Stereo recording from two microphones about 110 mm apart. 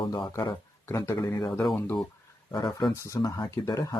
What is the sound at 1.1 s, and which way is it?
Speech, 35° left (ahead or behind).